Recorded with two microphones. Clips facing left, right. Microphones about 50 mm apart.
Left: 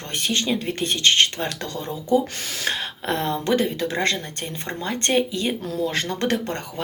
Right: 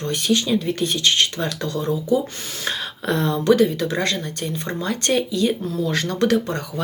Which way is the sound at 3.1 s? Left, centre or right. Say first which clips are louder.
Right 4 dB; left.